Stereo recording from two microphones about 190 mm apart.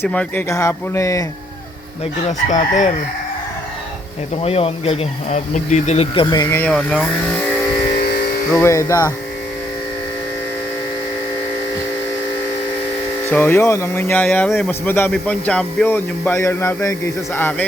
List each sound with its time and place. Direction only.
0.0 s speech: 10° left (ahead or behind)
2.5 s speech: 40° left (ahead or behind)
4.4 s speech: 30° left (ahead or behind)
6.3 s speech: 15° left (ahead or behind)
7.9 s a sound: 50° left (ahead or behind)
8.6 s speech: 15° left (ahead or behind)
13.3 s speech: 10° left (ahead or behind)